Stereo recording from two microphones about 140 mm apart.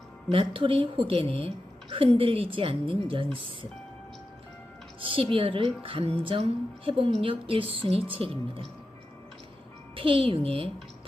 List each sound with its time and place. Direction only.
0.3 s a woman's voice: 40° right (ahead or behind)
4.9 s a woman's voice: 40° right (ahead or behind)
9.9 s a woman's voice: 40° right (ahead or behind)